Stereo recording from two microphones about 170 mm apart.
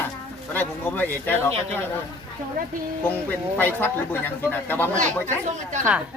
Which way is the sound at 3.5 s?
10° left (ahead or behind).